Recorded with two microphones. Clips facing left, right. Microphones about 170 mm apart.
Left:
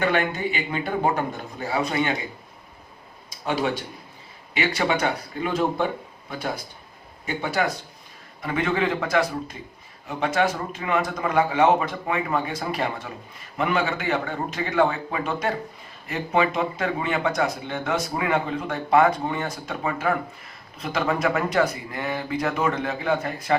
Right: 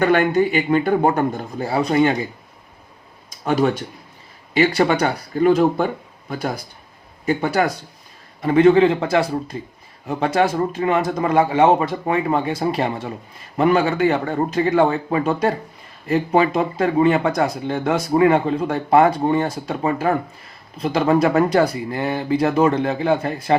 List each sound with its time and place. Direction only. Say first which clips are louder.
0.0 s speech: right 7 dB; 40° right (ahead or behind)
3.4 s speech: right 7 dB; 45° right (ahead or behind)
4.5 s speech: right 7 dB; 35° right (ahead or behind)